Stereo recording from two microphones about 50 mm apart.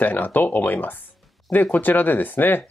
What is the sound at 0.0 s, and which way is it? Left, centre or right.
Speech, left.